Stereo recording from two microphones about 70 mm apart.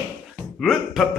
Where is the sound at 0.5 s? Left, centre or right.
Centre.